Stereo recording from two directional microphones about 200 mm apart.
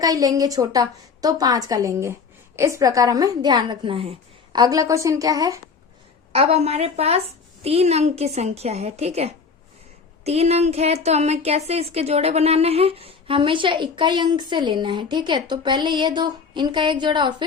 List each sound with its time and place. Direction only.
0.0 s a woman's voice: 15° right (ahead or behind)
6.3 s a woman's voice: 30° right (ahead or behind)